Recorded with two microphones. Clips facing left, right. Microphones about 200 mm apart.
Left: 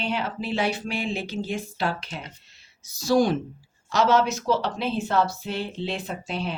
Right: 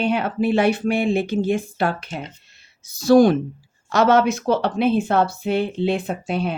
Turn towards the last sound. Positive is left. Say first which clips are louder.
# right 6 dB
turn(degrees=-55)  # may be behind; listen again after turning